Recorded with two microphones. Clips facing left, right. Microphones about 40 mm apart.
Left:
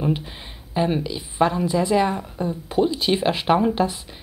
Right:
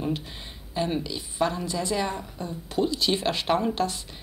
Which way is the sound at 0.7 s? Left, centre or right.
Centre.